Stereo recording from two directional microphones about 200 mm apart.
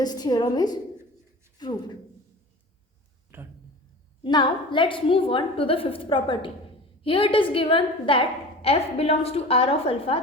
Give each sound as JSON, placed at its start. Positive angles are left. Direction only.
{"t": 0.0, "sound": "a woman's voice", "side_deg": 20}
{"t": 3.3, "sound": "speech", "side_deg": -10}
{"t": 4.2, "sound": "a woman's voice", "side_deg": 25}